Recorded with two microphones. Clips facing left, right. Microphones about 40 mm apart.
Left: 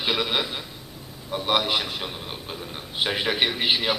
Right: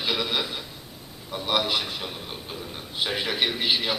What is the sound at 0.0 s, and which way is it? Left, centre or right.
A man's voice, centre.